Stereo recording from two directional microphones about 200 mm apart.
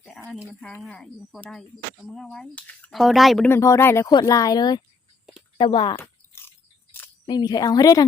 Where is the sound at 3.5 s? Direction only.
15° left (ahead or behind).